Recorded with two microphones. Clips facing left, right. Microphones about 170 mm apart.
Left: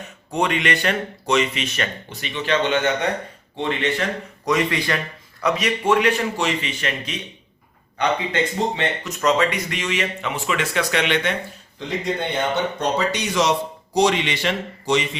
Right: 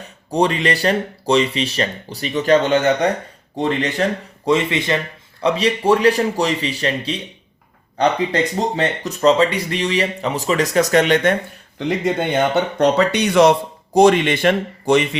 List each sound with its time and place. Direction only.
0.0 s speech: 35° right (ahead or behind)
4.4 s speech: 25° right (ahead or behind); by 11.3 s 45° right (ahead or behind)
12.8 s speech: 65° right (ahead or behind)